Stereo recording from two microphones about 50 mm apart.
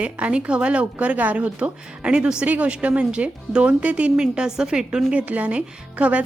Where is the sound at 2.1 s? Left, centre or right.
Centre.